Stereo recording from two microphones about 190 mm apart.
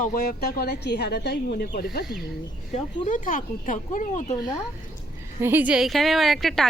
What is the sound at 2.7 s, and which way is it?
Speech, 40° left (ahead or behind).